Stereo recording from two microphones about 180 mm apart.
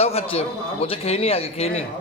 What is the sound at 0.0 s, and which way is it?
A man's voice, 35° left (ahead or behind).